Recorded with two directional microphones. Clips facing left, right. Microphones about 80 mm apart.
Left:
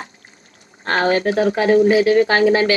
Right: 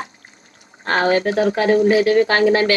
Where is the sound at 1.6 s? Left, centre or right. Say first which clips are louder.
Left 2 dB; left.